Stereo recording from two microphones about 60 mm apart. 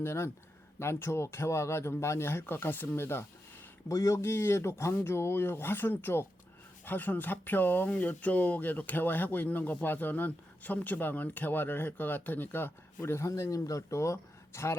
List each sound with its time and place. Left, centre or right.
0.0 s speech: left
3.8 s speech: left
4.2 s speech: left
13.2 s speech: left